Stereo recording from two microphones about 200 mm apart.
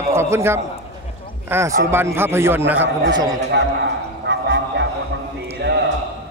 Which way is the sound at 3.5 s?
60° right (ahead or behind).